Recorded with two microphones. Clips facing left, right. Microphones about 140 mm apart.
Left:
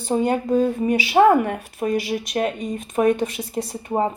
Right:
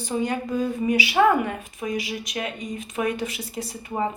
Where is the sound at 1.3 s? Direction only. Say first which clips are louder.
Left 5 dB; 50° left (ahead or behind).